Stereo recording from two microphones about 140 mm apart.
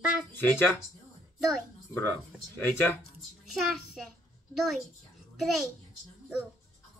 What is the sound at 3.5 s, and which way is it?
A child's voice, centre (ahead or behind).